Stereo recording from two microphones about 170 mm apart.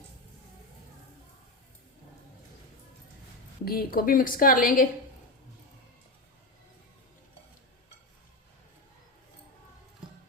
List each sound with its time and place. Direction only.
3.6 s a woman's voice: 65° left (ahead or behind)